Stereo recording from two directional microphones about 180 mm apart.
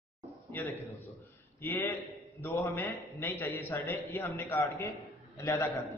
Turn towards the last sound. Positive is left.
turn(degrees=15)  # may be behind; listen again after turning